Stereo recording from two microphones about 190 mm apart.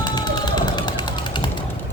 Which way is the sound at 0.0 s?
20° left (ahead or behind).